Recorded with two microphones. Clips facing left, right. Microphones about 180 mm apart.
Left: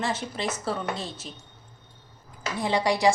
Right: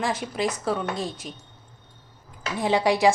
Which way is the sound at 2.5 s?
15° right (ahead or behind).